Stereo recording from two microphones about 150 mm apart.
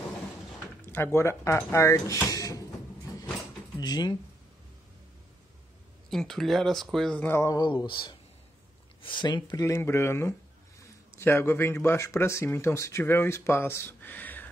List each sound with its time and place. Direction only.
0.8 s speech: 15° left (ahead or behind)
2.3 s a sound: 20° left (ahead or behind)
3.8 s speech: 25° left (ahead or behind)
6.0 s speech: centre (ahead or behind)
7.4 s speech: 25° left (ahead or behind)
9.5 s speech: 20° left (ahead or behind)